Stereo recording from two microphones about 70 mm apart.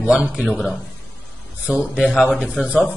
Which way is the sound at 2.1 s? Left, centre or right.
Centre.